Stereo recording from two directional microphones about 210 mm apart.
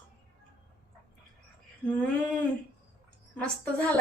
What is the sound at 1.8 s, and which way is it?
A woman's voice, 5° left (ahead or behind).